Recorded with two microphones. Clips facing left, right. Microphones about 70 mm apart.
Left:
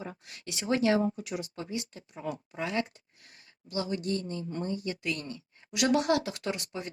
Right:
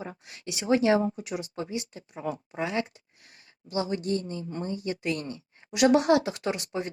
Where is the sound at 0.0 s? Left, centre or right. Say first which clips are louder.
Right 3 dB; right.